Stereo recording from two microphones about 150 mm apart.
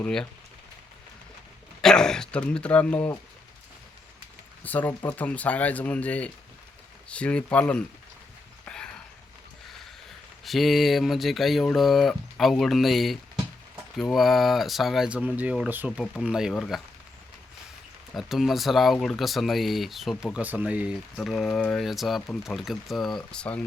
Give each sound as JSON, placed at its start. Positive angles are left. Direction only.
{"t": 0.0, "sound": "speech", "side_deg": 5}
{"t": 1.8, "sound": "speech", "side_deg": 5}
{"t": 4.6, "sound": "speech", "side_deg": 10}
{"t": 8.6, "sound": "a sound", "side_deg": 5}
{"t": 10.4, "sound": "speech", "side_deg": 0}
{"t": 18.1, "sound": "speech", "side_deg": 0}
{"t": 20.4, "sound": "speech", "side_deg": -10}